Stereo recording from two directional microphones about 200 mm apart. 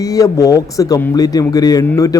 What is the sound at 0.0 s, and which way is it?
A man's voice, 15° left (ahead or behind).